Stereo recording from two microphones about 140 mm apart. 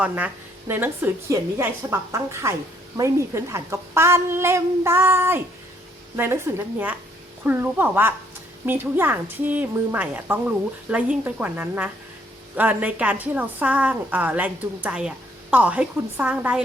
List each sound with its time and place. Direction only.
0.7 s a woman's voice: 15° right (ahead or behind)